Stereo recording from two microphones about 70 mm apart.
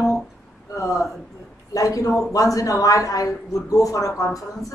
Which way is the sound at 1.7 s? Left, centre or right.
Left.